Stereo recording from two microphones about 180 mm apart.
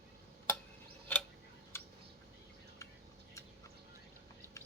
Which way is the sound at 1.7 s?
15° left (ahead or behind).